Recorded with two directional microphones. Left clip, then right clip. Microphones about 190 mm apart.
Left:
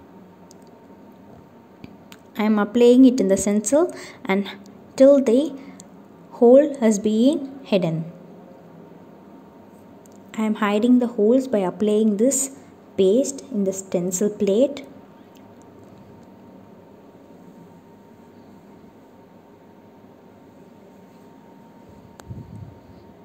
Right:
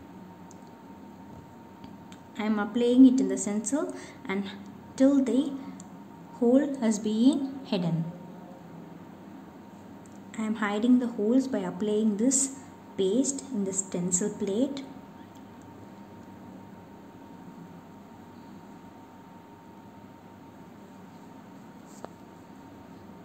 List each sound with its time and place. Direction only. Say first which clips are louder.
2.3 s a woman's voice: left 9 dB; 40° left (ahead or behind)
10.3 s a woman's voice: left 8 dB; 35° left (ahead or behind)